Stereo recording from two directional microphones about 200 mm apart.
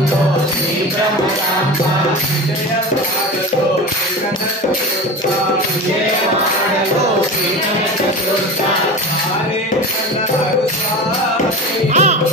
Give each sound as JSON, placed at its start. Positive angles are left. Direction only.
{"t": 11.9, "sound": "music", "side_deg": -35}